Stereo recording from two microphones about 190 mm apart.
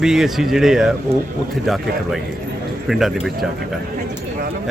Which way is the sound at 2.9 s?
Centre (ahead or behind).